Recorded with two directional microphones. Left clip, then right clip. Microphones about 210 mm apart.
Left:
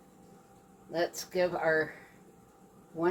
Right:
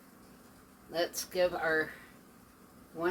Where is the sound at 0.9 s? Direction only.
Centre (ahead or behind).